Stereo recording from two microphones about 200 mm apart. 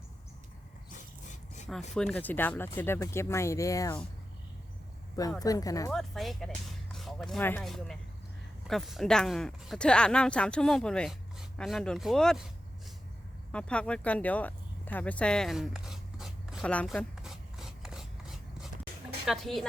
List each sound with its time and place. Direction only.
0.9 s a sound: 40° left (ahead or behind)
2.0 s speech: 5° left (ahead or behind)
5.4 s speech: 15° left (ahead or behind)
5.9 s speech: centre (ahead or behind)
13.5 s a sound: 5° left (ahead or behind)
19.2 s speech: centre (ahead or behind)